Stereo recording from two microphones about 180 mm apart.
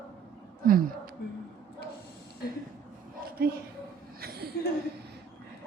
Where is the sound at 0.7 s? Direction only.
55° right (ahead or behind).